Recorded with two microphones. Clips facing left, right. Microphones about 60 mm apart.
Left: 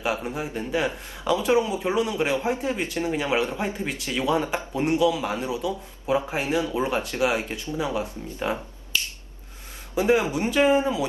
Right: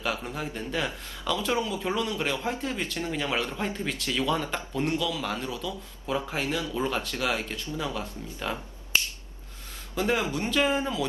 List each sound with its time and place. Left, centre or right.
0.0 s speech: left
9.9 s speech: centre